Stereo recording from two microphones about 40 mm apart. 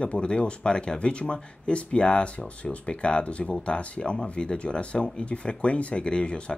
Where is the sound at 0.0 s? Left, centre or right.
Left.